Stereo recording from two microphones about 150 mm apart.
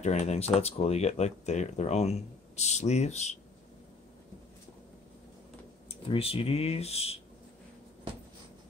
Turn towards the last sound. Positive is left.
turn(degrees=45)  # may be behind; listen again after turning